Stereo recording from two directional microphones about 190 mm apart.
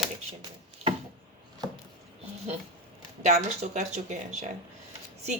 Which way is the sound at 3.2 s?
35° right (ahead or behind).